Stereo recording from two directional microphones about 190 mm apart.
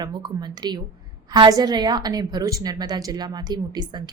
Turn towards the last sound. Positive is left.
turn(degrees=-20)  # may be behind; listen again after turning